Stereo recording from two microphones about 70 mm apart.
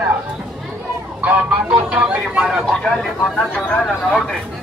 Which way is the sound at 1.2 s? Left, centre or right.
Right.